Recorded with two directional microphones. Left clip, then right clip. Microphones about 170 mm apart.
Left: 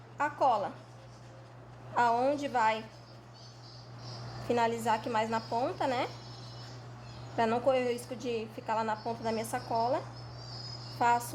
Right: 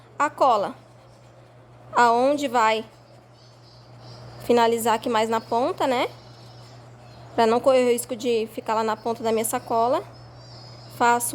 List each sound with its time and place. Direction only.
0.2 s a woman's voice: 65° right (ahead or behind)
2.0 s a woman's voice: 60° right (ahead or behind)
4.4 s a woman's voice: 65° right (ahead or behind)
7.3 s a woman's voice: 65° right (ahead or behind)